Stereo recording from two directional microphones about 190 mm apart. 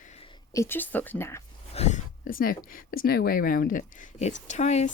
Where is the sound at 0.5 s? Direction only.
15° left (ahead or behind).